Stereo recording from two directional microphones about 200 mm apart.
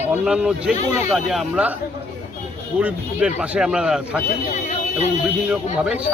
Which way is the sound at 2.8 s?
5° right (ahead or behind).